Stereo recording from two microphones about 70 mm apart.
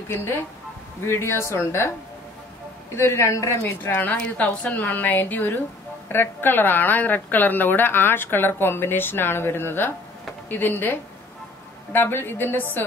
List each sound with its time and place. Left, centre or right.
0.1 s speech: left
3.0 s speech: left
3.8 s a woman's voice: left